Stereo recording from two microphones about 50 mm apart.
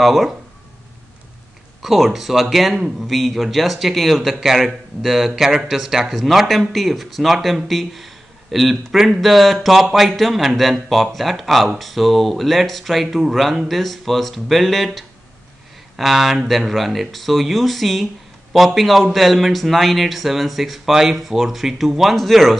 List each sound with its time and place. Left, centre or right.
0.0 s speech: centre
1.8 s speech: centre